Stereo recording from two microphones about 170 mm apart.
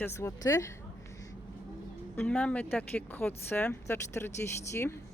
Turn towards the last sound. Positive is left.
turn(degrees=15)  # may be behind; listen again after turning